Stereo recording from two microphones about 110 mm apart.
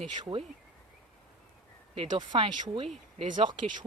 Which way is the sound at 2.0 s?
50° right (ahead or behind).